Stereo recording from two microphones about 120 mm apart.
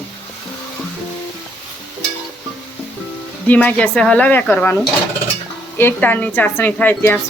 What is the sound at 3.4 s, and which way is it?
A woman's voice, 10° left (ahead or behind).